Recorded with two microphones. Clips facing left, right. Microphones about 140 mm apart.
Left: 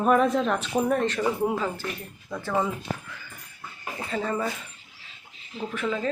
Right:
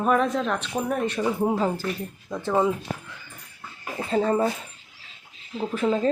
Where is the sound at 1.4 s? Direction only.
35° right (ahead or behind).